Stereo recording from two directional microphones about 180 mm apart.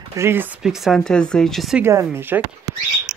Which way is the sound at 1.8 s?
15° right (ahead or behind).